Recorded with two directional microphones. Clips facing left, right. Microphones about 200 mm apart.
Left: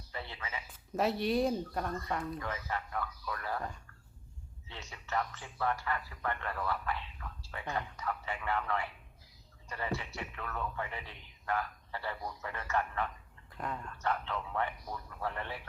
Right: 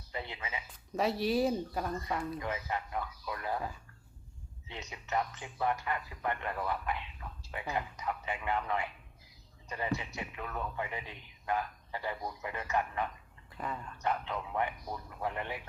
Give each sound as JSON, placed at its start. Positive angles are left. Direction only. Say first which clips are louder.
{"t": 0.1, "sound": "a sound", "louder": "right 2 dB", "side_deg": -15}
{"t": 0.7, "sound": "speech", "louder": "even", "side_deg": 0}
{"t": 2.4, "sound": "speech", "louder": "right 2 dB", "side_deg": -15}
{"t": 4.7, "sound": "speech", "louder": "right 2 dB", "side_deg": -20}
{"t": 7.6, "sound": "speech", "louder": "right 1 dB", "side_deg": -5}
{"t": 7.9, "sound": "speech", "louder": "right 1 dB", "side_deg": -15}
{"t": 13.6, "sound": "speech", "louder": "even", "side_deg": 0}
{"t": 14.0, "sound": "speech", "louder": "right 1 dB", "side_deg": -15}